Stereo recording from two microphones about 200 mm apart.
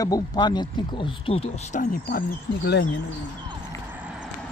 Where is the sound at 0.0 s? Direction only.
20° left (ahead or behind); by 2.2 s 45° left (ahead or behind).